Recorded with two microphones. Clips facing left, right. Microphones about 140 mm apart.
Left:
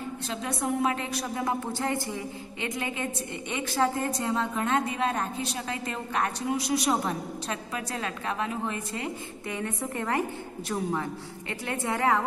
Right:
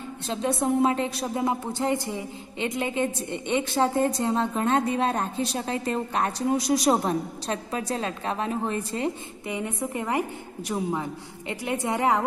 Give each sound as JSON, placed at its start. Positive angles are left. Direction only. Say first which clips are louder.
{"t": 0.3, "sound": "a woman's voice", "louder": "right 6 dB", "side_deg": -30}
{"t": 9.5, "sound": "a woman's voice", "louder": "right 3 dB", "side_deg": -15}